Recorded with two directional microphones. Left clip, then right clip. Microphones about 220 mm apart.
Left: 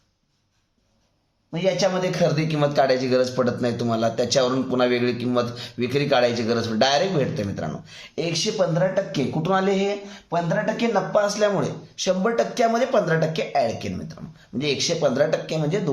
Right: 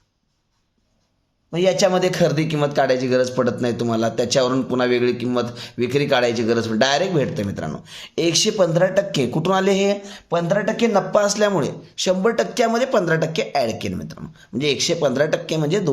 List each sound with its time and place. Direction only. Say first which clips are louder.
1.5 s a man's voice: right 5 dB; 50° right (ahead or behind)